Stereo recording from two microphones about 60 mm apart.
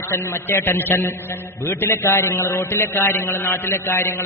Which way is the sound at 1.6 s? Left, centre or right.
Left.